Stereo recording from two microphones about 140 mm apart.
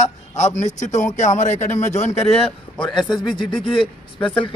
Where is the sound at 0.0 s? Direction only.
55° left (ahead or behind).